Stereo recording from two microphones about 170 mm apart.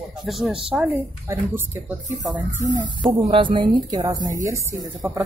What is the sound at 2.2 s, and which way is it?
Speech, 20° right (ahead or behind).